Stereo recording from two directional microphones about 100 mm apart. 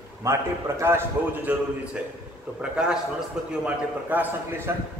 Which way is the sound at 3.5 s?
15° right (ahead or behind).